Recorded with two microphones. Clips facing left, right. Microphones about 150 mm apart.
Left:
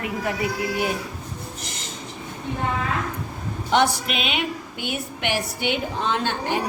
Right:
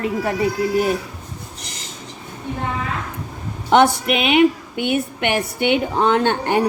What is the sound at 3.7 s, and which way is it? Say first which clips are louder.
A woman's voice: right 6 dB; 60° right (ahead or behind).